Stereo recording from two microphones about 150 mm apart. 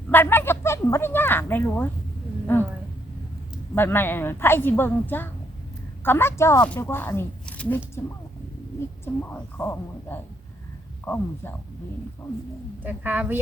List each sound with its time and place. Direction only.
0.1 s a sound: 15° left (ahead or behind)
3.8 s a woman's voice: 15° left (ahead or behind)
7.4 s a sound: 10° left (ahead or behind)
8.0 s a woman's voice: 15° left (ahead or behind)
9.3 s a woman's voice: 15° left (ahead or behind)
12.8 s a woman's voice: 10° right (ahead or behind)